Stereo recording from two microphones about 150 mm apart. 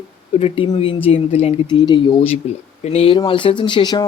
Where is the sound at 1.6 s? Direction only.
30° left (ahead or behind).